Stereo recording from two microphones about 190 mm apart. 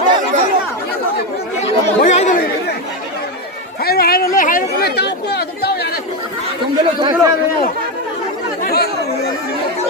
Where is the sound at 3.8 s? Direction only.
55° left (ahead or behind).